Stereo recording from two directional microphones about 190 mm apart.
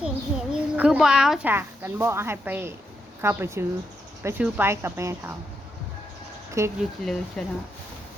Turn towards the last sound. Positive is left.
turn(degrees=0)  # may be behind; listen again after turning